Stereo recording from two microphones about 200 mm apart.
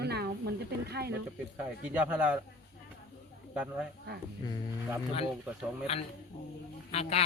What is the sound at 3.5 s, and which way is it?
Speech, 5° right (ahead or behind).